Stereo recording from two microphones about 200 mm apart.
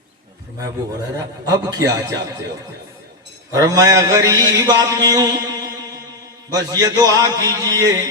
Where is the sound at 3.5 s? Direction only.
15° right (ahead or behind).